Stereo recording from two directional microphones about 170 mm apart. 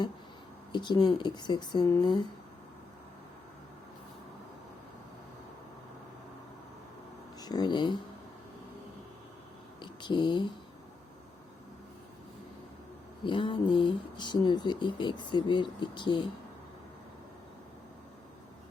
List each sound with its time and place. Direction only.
0.7 s speech: 25° left (ahead or behind)
7.3 s speech: 25° left (ahead or behind)
9.8 s speech: 25° left (ahead or behind)
13.2 s speech: 30° left (ahead or behind)